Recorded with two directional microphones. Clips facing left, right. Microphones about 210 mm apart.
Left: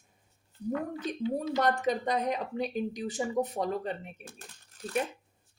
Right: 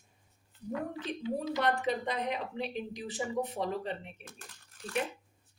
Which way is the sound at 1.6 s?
40° left (ahead or behind).